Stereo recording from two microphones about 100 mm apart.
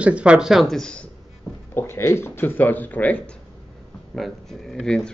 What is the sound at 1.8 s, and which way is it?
Speech, 25° left (ahead or behind).